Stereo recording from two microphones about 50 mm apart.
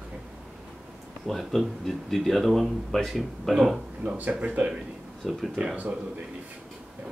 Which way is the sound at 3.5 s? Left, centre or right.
Centre.